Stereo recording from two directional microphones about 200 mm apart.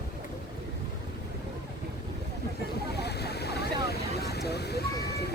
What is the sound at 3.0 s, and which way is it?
Waves, 55° left (ahead or behind).